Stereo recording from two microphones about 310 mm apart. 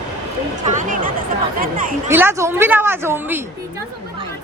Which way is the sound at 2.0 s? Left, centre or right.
Centre.